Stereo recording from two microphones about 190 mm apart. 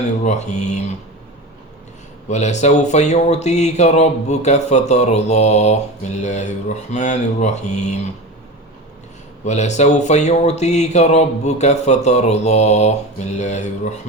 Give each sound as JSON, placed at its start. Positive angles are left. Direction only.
{"t": 0.3, "sound": "speech", "side_deg": 35}
{"t": 2.3, "sound": "speech", "side_deg": 40}
{"t": 9.4, "sound": "speech", "side_deg": 40}